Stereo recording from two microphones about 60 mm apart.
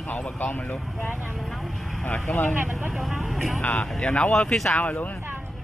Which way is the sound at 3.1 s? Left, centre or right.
Centre.